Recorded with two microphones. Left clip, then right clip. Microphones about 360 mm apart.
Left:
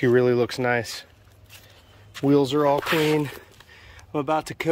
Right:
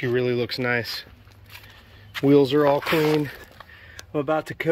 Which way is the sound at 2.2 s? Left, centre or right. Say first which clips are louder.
Right 2 dB; centre.